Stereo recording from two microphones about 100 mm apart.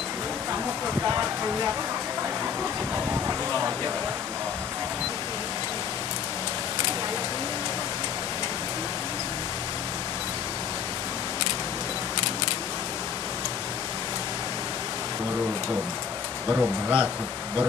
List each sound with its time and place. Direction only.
16.4 s speech: 15° right (ahead or behind)